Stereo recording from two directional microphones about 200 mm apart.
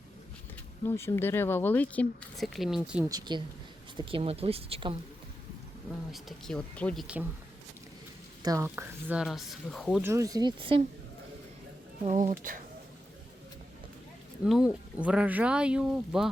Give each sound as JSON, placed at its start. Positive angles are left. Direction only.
{"t": 0.9, "sound": "speech", "side_deg": 10}
{"t": 3.1, "sound": "speech", "side_deg": -20}
{"t": 6.1, "sound": "speech", "side_deg": 0}
{"t": 8.4, "sound": "speech", "side_deg": -15}
{"t": 10.0, "sound": "speech", "side_deg": -15}
{"t": 12.0, "sound": "speech", "side_deg": -40}
{"t": 14.4, "sound": "speech", "side_deg": -5}